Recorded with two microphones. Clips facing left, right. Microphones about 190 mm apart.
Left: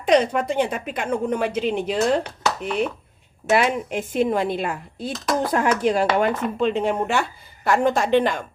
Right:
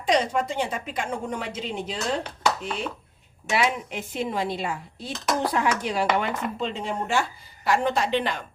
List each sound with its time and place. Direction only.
0.0 s a woman's voice: 60° left (ahead or behind)
3.5 s speech: 50° left (ahead or behind)